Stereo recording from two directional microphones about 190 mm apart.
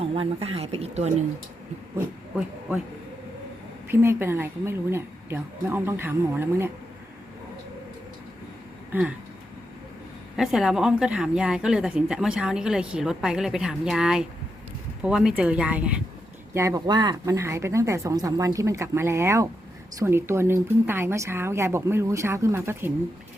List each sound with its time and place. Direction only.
0.0 s speech: 30° right (ahead or behind)
2.3 s speech: 5° right (ahead or behind)
3.8 s speech: 15° right (ahead or behind)
8.9 s a sound: 10° right (ahead or behind)
10.3 s speech: centre (ahead or behind)
16.6 s speech: 20° right (ahead or behind)